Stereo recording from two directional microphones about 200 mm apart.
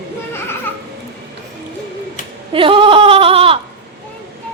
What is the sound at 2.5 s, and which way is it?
Bleat, 25° right (ahead or behind).